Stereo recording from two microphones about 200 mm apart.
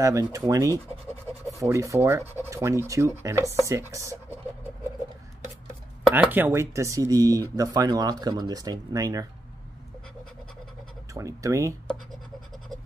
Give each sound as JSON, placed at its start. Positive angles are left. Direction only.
{"t": 0.0, "sound": "speech", "side_deg": -15}
{"t": 6.1, "sound": "speech", "side_deg": -10}
{"t": 11.1, "sound": "speech", "side_deg": -15}